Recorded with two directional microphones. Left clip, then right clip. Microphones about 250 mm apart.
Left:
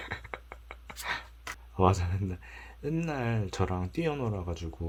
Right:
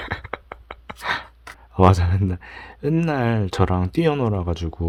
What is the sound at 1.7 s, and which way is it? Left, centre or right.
Speech, right.